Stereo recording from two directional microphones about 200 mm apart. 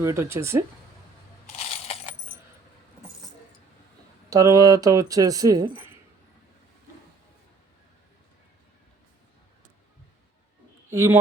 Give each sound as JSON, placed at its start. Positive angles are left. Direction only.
{"t": 0.0, "sound": "speech", "side_deg": -15}
{"t": 1.5, "sound": "coin", "side_deg": 30}
{"t": 4.3, "sound": "speech", "side_deg": -15}
{"t": 10.9, "sound": "speech", "side_deg": -15}